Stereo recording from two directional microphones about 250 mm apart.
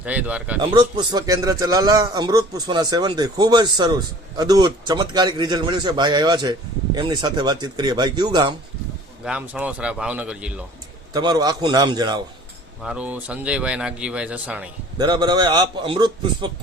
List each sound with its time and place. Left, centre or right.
0.0 s speech: centre
0.6 s a man's voice: right
9.2 s speech: centre
11.1 s a man's voice: centre
12.8 s speech: centre
14.9 s a man's voice: centre